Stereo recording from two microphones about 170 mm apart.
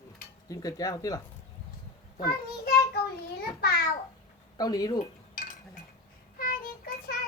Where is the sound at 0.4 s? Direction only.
20° left (ahead or behind).